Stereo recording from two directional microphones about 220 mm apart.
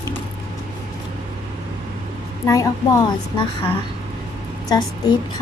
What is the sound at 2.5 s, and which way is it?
A woman's voice, 15° left (ahead or behind).